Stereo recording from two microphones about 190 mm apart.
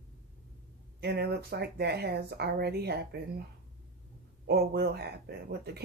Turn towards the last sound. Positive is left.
turn(degrees=-60)  # may be behind; listen again after turning